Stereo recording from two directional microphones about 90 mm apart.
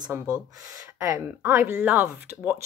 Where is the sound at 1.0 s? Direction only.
30° right (ahead or behind); by 2.6 s 15° right (ahead or behind).